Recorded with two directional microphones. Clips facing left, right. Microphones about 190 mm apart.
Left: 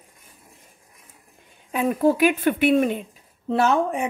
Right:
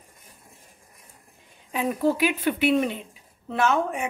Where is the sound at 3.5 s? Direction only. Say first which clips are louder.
Left 3 dB; 35° left (ahead or behind).